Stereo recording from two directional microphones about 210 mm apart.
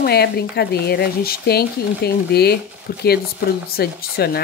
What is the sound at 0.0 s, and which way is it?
Speech, 50° left (ahead or behind).